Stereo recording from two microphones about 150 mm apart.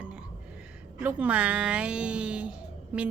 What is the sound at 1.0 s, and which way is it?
A woman's voice, 10° right (ahead or behind).